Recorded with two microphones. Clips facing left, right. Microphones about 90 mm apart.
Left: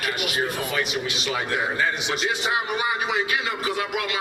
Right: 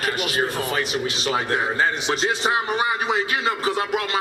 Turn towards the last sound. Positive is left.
turn(degrees=-35)  # may be behind; listen again after turning